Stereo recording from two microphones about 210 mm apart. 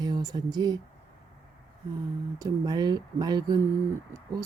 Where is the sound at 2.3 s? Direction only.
15° right (ahead or behind).